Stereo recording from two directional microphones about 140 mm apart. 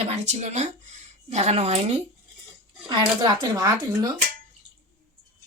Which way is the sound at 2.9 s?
30° right (ahead or behind).